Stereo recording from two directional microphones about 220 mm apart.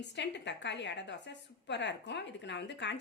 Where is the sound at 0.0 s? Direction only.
50° left (ahead or behind).